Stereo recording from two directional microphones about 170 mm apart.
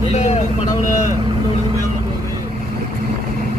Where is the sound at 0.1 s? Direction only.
40° left (ahead or behind).